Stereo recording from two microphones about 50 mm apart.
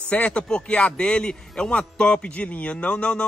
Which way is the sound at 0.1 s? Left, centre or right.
Left.